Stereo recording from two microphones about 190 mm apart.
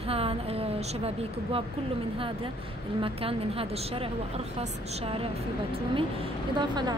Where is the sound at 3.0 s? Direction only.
30° right (ahead or behind).